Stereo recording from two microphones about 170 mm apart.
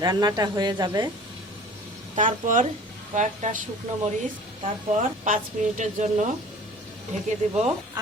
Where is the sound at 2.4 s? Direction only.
50° right (ahead or behind).